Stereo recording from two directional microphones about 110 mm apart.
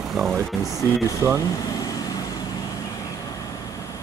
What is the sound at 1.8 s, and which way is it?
Vehicle, 35° left (ahead or behind).